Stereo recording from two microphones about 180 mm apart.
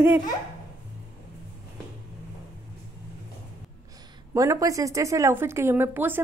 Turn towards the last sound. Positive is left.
turn(degrees=-10)  # may be behind; listen again after turning